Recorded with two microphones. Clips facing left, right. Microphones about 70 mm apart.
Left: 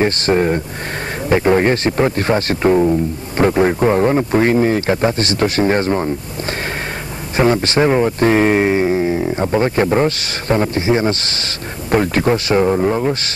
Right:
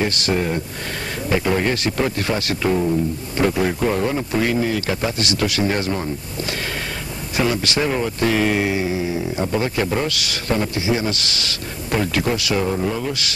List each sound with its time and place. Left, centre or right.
0.0 s speech: left
7.3 s speech: left